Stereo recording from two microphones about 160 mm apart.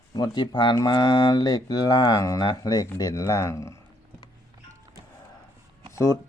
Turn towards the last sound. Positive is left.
turn(degrees=20)  # may be behind; listen again after turning